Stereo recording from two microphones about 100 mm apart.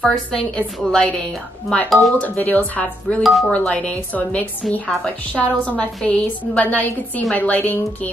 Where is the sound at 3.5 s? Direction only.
15° left (ahead or behind).